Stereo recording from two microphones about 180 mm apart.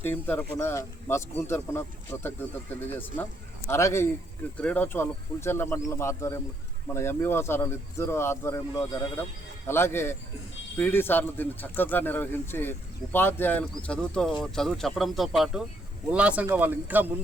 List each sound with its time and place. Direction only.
0.0 s speech: 10° left (ahead or behind); by 17.2 s 10° right (ahead or behind)